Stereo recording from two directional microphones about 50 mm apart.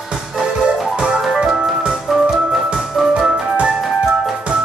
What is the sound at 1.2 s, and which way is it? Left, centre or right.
Music, centre.